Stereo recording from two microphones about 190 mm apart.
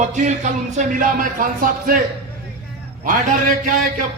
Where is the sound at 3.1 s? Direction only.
45° right (ahead or behind).